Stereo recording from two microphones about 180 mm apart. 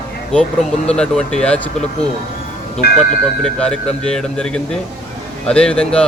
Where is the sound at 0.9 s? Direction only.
5° left (ahead or behind).